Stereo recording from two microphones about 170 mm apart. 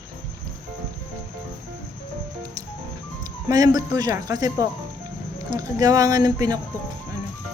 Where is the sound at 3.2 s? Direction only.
20° right (ahead or behind).